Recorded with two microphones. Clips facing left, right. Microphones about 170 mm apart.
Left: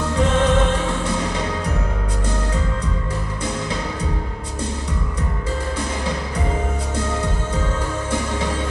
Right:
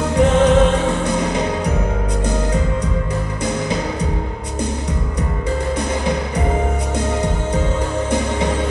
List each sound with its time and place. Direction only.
0.1 s music: 15° right (ahead or behind)
7.0 s music: 15° right (ahead or behind)